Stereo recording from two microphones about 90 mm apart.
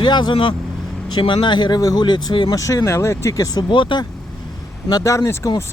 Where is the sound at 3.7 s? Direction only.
65° left (ahead or behind).